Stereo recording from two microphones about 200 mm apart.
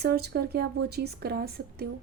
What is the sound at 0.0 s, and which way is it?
Speech, 50° right (ahead or behind).